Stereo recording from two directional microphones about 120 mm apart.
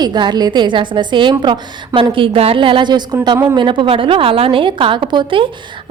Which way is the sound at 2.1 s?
50° right (ahead or behind).